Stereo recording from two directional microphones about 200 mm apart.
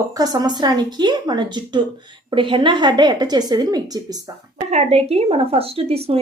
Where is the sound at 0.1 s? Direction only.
20° right (ahead or behind).